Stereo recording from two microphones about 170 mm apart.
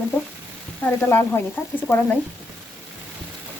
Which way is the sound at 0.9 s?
15° left (ahead or behind).